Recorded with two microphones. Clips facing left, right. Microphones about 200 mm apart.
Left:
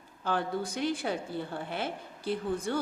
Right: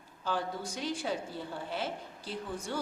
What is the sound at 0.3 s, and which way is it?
A woman's voice, 55° left (ahead or behind).